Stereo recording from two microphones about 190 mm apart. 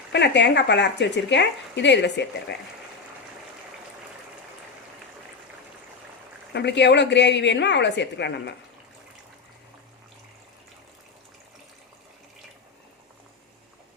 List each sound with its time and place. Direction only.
0.1 s speech: 65° left (ahead or behind)
6.5 s speech: 65° left (ahead or behind)